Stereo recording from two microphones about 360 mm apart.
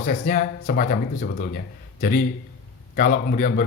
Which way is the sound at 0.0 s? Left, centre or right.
Left.